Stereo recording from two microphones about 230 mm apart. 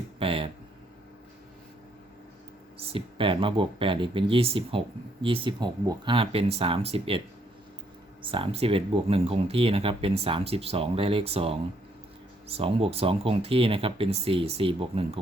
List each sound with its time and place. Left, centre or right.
0.2 s speech: right
2.7 s speech: right
8.2 s speech: right